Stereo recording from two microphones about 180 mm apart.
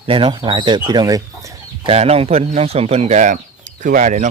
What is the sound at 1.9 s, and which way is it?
A man's voice, 35° right (ahead or behind).